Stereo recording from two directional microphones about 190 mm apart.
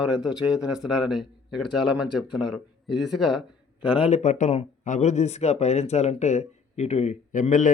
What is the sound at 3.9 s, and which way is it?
Speech, 30° left (ahead or behind).